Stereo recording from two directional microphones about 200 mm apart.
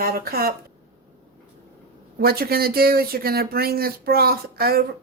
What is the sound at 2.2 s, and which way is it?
Speech, 50° right (ahead or behind).